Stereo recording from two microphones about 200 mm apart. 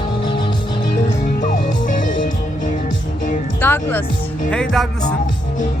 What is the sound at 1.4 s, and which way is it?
Music, 40° left (ahead or behind).